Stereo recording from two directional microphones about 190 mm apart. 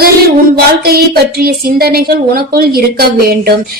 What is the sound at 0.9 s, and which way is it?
A woman's voice, 55° right (ahead or behind).